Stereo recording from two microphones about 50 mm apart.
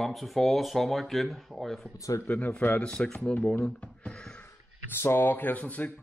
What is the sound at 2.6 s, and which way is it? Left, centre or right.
Speech, left.